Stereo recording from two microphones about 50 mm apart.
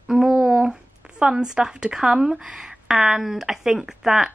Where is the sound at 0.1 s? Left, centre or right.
Centre.